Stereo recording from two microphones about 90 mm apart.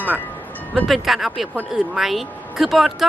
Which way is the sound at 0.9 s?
5° right (ahead or behind).